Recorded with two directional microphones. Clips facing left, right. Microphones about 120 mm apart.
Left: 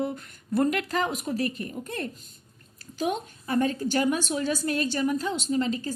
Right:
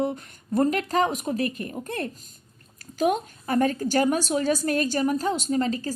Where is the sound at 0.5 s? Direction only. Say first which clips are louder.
Right 3 dB; 40° right (ahead or behind).